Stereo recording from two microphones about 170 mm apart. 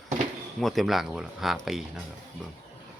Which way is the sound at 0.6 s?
Centre (ahead or behind).